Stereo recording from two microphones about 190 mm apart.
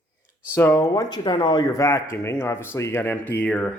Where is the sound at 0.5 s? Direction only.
15° left (ahead or behind).